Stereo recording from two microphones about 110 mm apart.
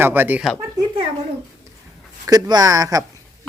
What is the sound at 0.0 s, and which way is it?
Speech, 15° right (ahead or behind).